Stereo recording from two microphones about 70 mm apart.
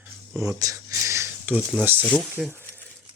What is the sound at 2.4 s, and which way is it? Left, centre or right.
Speech, centre.